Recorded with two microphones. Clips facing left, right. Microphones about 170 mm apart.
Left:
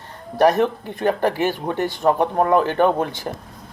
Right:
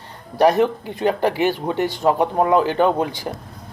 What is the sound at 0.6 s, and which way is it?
Speech, 15° right (ahead or behind).